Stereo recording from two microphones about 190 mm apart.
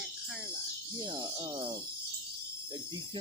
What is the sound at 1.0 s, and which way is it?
Speech, 25° right (ahead or behind).